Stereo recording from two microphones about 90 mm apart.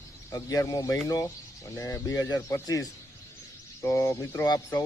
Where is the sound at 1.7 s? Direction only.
35° left (ahead or behind).